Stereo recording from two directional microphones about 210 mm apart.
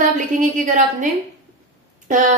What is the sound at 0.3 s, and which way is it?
A woman's voice, 40° right (ahead or behind).